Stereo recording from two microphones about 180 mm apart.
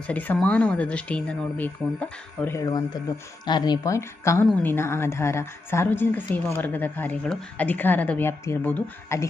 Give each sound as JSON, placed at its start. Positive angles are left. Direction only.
{"t": 0.1, "sound": "a woman's voice", "side_deg": 10}